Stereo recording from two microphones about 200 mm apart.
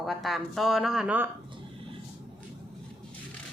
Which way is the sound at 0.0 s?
Centre (ahead or behind).